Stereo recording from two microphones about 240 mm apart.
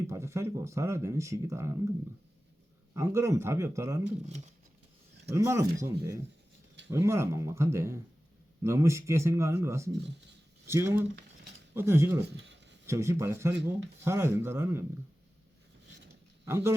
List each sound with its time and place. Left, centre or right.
0.1 s speech: centre
2.9 s speech: centre
5.3 s speech: centre
12.3 s speech: right
12.8 s speech: centre
16.5 s speech: centre